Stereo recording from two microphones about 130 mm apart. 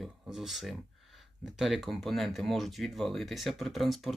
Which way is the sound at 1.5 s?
Centre (ahead or behind).